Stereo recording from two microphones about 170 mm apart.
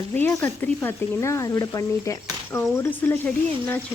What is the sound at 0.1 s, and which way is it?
Speech, 15° left (ahead or behind).